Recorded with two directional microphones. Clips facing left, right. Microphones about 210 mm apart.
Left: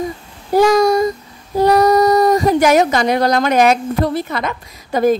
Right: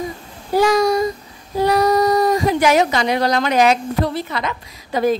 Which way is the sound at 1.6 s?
45° left (ahead or behind).